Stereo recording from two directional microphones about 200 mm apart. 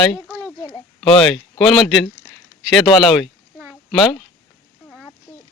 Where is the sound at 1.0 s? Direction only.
5° left (ahead or behind).